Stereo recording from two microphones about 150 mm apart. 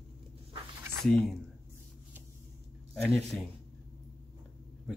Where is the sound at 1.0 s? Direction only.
Centre (ahead or behind).